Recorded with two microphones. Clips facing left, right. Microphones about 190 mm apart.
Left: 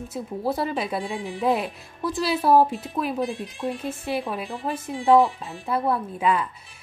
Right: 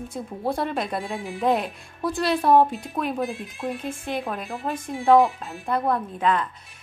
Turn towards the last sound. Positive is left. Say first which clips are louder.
# even
turn(degrees=10)  # may be behind; listen again after turning